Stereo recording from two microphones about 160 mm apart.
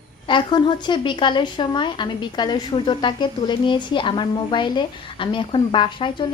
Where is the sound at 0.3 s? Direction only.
30° left (ahead or behind).